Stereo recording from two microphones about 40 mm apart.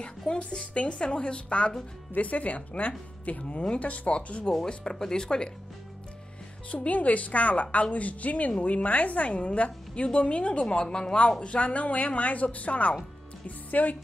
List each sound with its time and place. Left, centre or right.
0.3 s a woman's voice: left
4.6 s a woman's voice: centre
6.7 s a woman's voice: left